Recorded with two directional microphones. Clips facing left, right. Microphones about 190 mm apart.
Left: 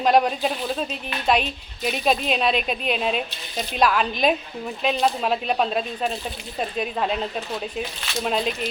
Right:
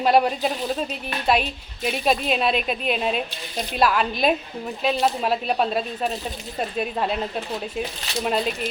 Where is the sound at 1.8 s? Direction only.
5° right (ahead or behind).